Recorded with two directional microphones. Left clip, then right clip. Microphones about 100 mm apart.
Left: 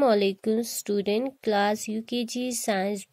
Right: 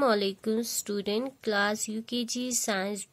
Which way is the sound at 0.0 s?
30° left (ahead or behind).